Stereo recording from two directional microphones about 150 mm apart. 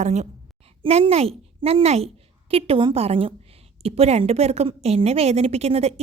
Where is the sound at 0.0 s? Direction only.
50° right (ahead or behind).